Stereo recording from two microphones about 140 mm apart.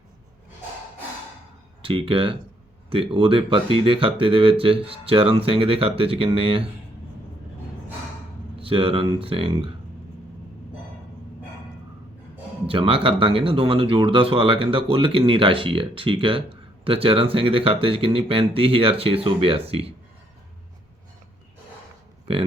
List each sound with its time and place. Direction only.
1.8 s speech: 40° right (ahead or behind)
8.5 s speech: 40° right (ahead or behind)
12.6 s speech: 40° right (ahead or behind)
22.3 s a sound: 45° right (ahead or behind)